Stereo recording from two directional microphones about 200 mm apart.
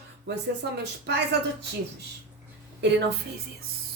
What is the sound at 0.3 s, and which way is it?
Speech, 55° right (ahead or behind).